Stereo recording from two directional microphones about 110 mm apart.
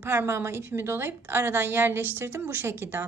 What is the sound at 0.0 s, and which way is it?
A woman's voice, 20° right (ahead or behind).